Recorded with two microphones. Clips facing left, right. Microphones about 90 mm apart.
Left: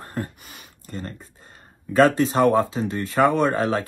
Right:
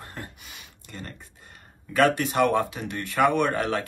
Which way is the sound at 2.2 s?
25° left (ahead or behind).